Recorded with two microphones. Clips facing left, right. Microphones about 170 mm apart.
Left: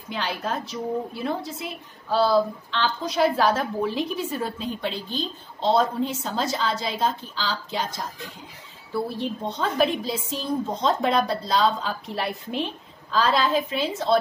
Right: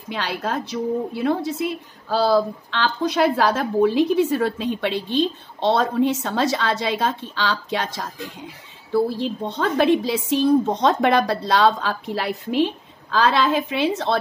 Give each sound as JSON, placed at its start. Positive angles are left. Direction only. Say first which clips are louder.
{"t": 0.1, "sound": "a woman's voice", "louder": "right 3 dB", "side_deg": -70}
{"t": 2.0, "sound": "a woman's voice", "louder": "right 2 dB", "side_deg": -85}
{"t": 9.2, "sound": "a woman's voice", "louder": "right 3 dB", "side_deg": -70}